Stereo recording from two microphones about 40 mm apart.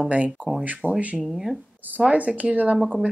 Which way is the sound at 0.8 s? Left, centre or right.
Right.